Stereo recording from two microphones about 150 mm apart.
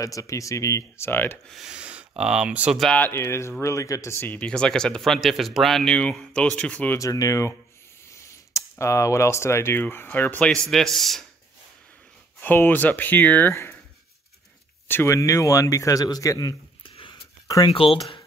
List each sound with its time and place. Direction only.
0.0 s a man's voice: 20° left (ahead or behind)
1.5 s speech: 5° right (ahead or behind)
2.9 s speech: 15° left (ahead or behind)
7.0 s a man's voice: 20° left (ahead or behind); by 11.2 s centre (ahead or behind)
12.4 s speech: 15° left (ahead or behind)
14.9 s a man's voice: 15° left (ahead or behind)
16.9 s a sound: 35° left (ahead or behind)
17.6 s speech: 35° left (ahead or behind)